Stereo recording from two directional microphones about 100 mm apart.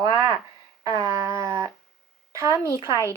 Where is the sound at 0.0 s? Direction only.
35° right (ahead or behind).